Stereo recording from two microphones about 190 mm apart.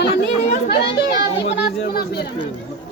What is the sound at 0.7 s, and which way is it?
Children playing, 60° left (ahead or behind).